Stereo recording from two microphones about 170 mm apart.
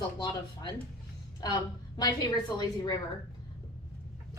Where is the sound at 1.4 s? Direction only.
25° left (ahead or behind).